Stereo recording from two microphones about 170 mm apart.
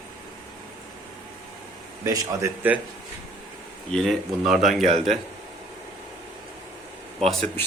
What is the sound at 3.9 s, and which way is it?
Speech, 5° left (ahead or behind).